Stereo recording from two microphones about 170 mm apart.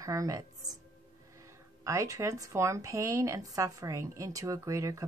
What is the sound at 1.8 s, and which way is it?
Speech, 20° right (ahead or behind).